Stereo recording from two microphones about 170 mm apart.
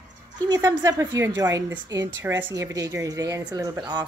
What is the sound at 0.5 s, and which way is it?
A woman's voice, 15° right (ahead or behind).